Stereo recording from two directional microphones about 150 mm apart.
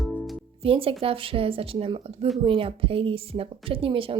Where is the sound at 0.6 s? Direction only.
35° right (ahead or behind).